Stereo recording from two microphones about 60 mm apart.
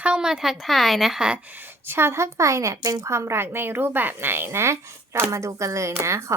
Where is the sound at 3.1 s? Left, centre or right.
Right.